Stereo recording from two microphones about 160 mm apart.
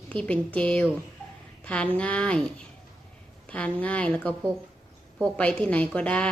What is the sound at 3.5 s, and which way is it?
A woman's voice, 10° left (ahead or behind).